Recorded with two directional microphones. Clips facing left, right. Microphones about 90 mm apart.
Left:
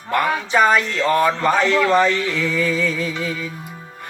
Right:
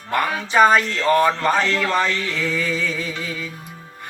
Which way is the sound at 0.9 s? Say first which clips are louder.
Even; 10° left (ahead or behind).